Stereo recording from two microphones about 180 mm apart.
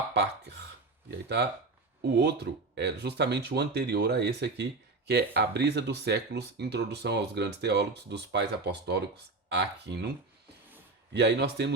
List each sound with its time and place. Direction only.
0.1 s speech: 70° right (ahead or behind)
11.1 s speech: 65° right (ahead or behind)